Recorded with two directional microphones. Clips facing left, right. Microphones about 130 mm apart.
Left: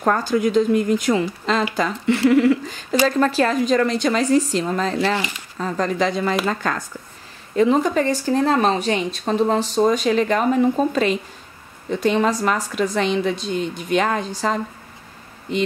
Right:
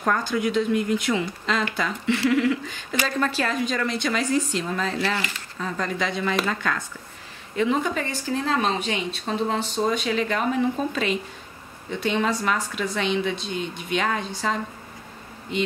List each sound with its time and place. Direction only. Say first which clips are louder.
0.0 s speech: left 5 dB; 40° left (ahead or behind)